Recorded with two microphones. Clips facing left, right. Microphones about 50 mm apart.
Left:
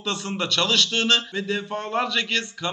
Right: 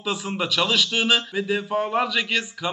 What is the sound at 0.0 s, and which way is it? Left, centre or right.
Speech, centre.